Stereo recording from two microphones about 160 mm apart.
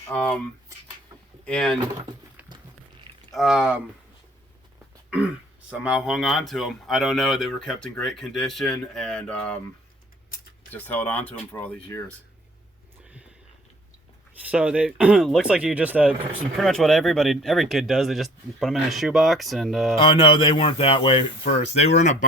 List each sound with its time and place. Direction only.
0.1 s speech: 5° left (ahead or behind)
1.5 s speech: 5° left (ahead or behind)
3.3 s speech: 5° right (ahead or behind)
5.8 s speech: 5° right (ahead or behind)
10.7 s speech: 10° left (ahead or behind)
13.0 s a sound: 5° right (ahead or behind)
14.4 s speech: 10° right (ahead or behind)
20.1 s speech: 30° left (ahead or behind)